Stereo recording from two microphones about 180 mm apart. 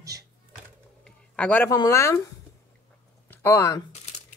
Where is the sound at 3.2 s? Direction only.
15° left (ahead or behind).